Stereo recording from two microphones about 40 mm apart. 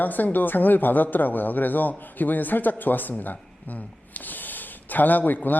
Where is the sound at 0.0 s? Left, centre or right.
Left.